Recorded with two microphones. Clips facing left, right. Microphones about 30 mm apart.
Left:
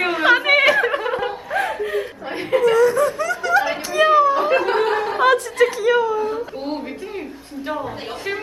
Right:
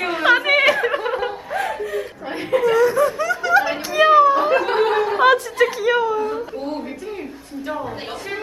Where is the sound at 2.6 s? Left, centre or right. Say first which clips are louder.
Left 1 dB; centre.